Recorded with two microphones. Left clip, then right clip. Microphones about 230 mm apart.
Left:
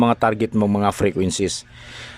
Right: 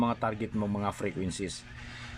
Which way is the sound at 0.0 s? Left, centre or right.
Left.